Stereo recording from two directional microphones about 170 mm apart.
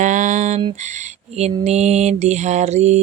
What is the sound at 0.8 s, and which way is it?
Mantra, 45° right (ahead or behind).